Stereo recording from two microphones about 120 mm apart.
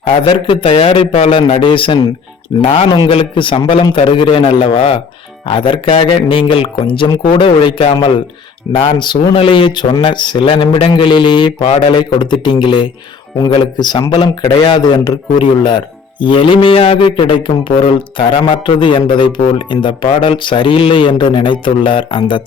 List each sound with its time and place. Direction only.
0.1 s mantra: 45° left (ahead or behind)
2.5 s speech: 40° left (ahead or behind)
3.1 s mantra: 45° left (ahead or behind)
9.0 s speech: 45° left (ahead or behind)
16.2 s mantra: 45° left (ahead or behind)